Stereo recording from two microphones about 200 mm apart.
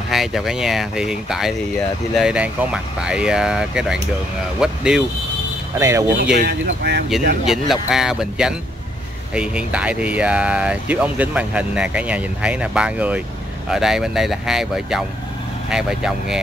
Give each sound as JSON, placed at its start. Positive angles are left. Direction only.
{"t": 0.1, "sound": "speech", "side_deg": 0}
{"t": 5.8, "sound": "speech", "side_deg": -15}
{"t": 6.4, "sound": "speech", "side_deg": -55}
{"t": 7.4, "sound": "speech", "side_deg": 0}